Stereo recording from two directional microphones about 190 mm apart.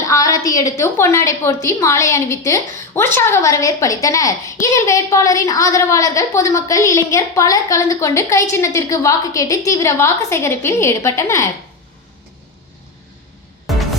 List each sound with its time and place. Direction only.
0.0 s a woman's voice: 15° left (ahead or behind)